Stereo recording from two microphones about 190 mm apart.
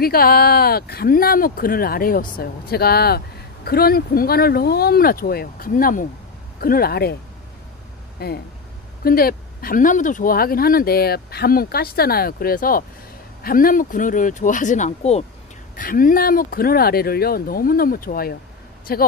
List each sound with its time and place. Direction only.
0.0 s speech: 50° left (ahead or behind)
8.2 s speech: 55° left (ahead or behind); by 15.2 s 35° left (ahead or behind)
15.7 s speech: 45° left (ahead or behind)